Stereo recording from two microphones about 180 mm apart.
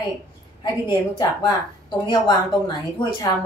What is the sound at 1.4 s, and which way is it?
Speech, 25° left (ahead or behind).